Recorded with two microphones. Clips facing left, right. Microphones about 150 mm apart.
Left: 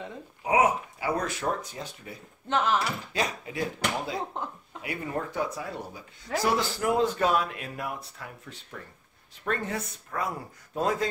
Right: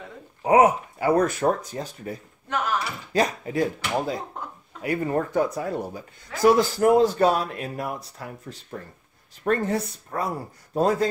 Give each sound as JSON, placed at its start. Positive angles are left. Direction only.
{"t": 0.4, "sound": "speech", "side_deg": -50}
{"t": 2.4, "sound": "speech", "side_deg": 25}
{"t": 3.1, "sound": "speech", "side_deg": -45}
{"t": 4.4, "sound": "speech", "side_deg": 20}
{"t": 4.8, "sound": "speech", "side_deg": -45}